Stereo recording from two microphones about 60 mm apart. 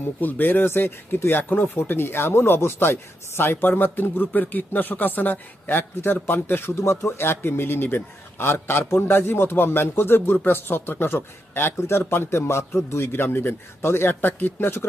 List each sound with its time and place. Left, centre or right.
0.2 s speech: left